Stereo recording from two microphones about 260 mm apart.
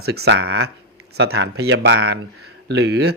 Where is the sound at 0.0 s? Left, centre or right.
Right.